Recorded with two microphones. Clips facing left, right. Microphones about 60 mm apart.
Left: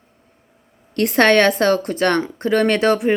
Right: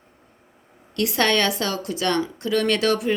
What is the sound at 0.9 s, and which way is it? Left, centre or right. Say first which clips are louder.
A woman's voice: left 7 dB; left.